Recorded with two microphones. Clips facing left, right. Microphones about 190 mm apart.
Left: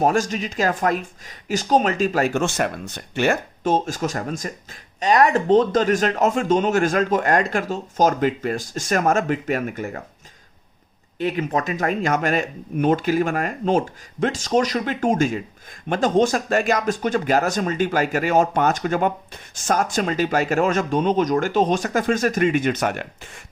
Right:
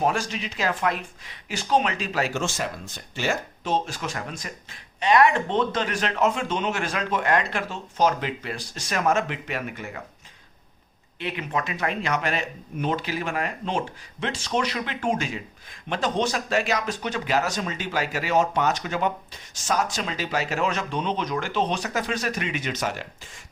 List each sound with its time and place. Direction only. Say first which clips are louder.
0.0 s speech: left 5 dB; 45° left (ahead or behind)
11.2 s speech: left 6 dB; 40° left (ahead or behind); by 23.4 s 60° left (ahead or behind)